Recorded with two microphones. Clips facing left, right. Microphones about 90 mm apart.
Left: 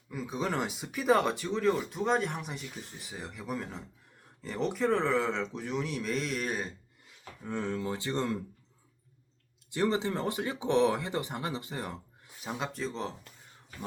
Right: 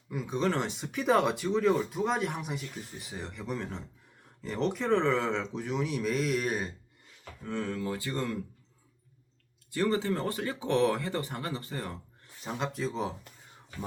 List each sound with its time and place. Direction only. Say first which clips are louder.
0.1 s speech: right 3 dB; centre (ahead or behind)
7.4 s speech: even; 20° left (ahead or behind)
9.6 s speech: right 1 dB; 20° left (ahead or behind)
12.4 s speech: right 2 dB; centre (ahead or behind)